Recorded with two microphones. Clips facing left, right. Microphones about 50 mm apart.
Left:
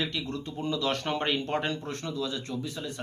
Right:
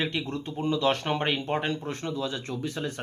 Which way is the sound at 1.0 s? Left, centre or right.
Centre.